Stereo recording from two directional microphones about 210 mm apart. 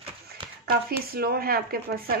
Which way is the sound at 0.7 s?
45° right (ahead or behind).